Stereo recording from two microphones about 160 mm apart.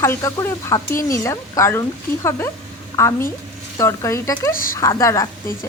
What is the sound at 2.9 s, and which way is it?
Speech, 15° left (ahead or behind).